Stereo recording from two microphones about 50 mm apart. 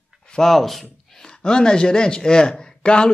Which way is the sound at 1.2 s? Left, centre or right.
Centre.